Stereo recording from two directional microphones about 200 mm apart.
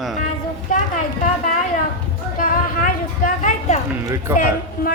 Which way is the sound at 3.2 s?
40° left (ahead or behind).